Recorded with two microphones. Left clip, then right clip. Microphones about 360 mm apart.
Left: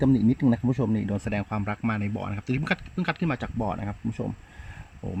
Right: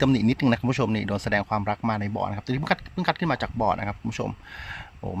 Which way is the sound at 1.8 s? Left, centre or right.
Right.